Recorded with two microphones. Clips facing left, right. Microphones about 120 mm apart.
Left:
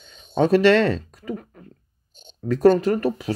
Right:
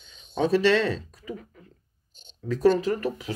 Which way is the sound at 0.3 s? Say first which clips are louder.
Left 5 dB; 65° left (ahead or behind).